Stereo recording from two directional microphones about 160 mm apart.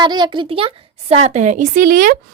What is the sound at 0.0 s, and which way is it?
A child's voice, 30° right (ahead or behind).